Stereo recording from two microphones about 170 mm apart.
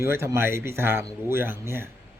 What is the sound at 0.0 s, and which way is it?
Speech, 15° right (ahead or behind).